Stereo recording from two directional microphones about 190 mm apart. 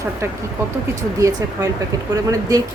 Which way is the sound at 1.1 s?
15° right (ahead or behind).